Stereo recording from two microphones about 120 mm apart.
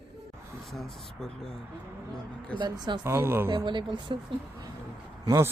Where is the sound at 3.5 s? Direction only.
40° right (ahead or behind).